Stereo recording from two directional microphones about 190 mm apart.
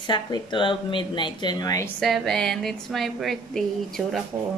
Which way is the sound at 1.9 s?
Centre (ahead or behind).